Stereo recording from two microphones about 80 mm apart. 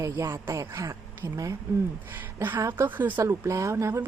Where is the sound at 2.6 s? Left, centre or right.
Right.